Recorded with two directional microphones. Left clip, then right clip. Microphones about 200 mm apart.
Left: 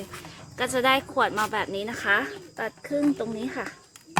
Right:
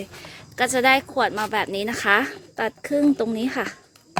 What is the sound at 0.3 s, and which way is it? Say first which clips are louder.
Speech: right 6 dB; 30° right (ahead or behind).